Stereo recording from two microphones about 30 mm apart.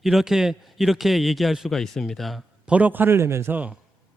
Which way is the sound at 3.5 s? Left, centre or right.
Right.